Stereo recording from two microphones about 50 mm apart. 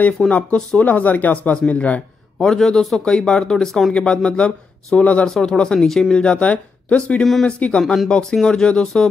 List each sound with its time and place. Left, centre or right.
0.2 s speech: centre
0.7 s speech: left
2.3 s speech: centre
8.1 s speech: centre